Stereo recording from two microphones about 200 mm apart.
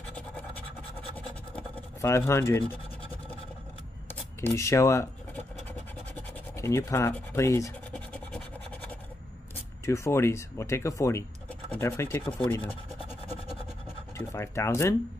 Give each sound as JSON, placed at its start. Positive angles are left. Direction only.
{"t": 1.1, "sound": "scratch", "side_deg": 10}
{"t": 3.0, "sound": "a sound", "side_deg": 25}
{"t": 4.1, "sound": "shuffling cards", "side_deg": 10}
{"t": 6.5, "sound": "speech", "side_deg": 15}
{"t": 7.9, "sound": "scratch", "side_deg": 5}
{"t": 9.8, "sound": "speech", "side_deg": 15}
{"t": 14.1, "sound": "speech", "side_deg": 15}